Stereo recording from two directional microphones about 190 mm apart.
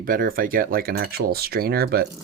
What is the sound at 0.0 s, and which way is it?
Speech, 50° right (ahead or behind).